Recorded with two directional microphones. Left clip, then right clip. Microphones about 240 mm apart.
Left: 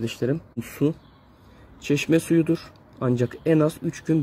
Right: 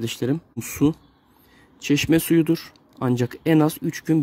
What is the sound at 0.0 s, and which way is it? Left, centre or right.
Speech, right.